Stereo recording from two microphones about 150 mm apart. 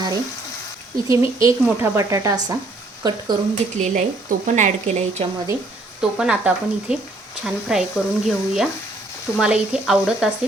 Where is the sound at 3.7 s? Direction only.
50° right (ahead or behind).